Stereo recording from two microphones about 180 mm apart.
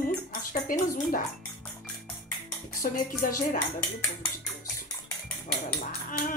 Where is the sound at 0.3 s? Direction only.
50° left (ahead or behind).